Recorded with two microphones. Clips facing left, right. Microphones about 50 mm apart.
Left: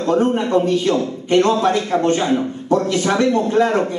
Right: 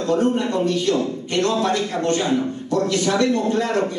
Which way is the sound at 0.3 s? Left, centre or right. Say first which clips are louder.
Left 4 dB; left.